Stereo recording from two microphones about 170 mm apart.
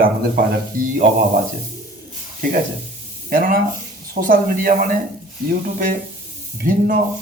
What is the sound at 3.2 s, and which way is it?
Speech, 60° right (ahead or behind).